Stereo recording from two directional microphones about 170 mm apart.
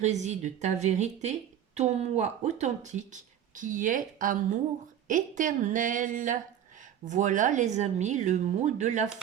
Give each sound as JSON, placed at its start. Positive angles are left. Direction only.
{"t": 0.0, "sound": "a woman's voice", "side_deg": -40}